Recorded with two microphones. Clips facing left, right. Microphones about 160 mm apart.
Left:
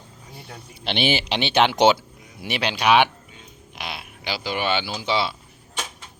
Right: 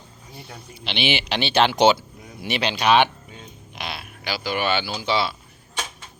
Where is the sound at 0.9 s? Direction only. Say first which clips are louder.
Left 2 dB; 45° left (ahead or behind).